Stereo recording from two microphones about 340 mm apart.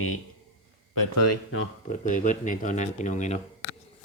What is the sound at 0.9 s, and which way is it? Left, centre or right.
Speech, left.